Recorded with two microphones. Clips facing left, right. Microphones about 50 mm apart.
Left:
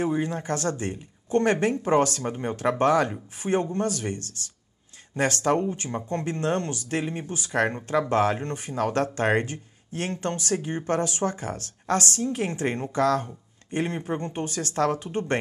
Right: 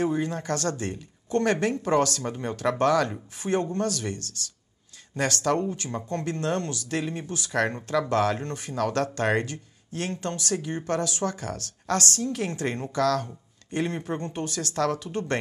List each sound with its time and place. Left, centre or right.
0.0 s speech: left